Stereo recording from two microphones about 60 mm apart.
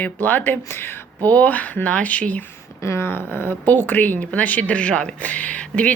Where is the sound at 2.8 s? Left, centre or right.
Left.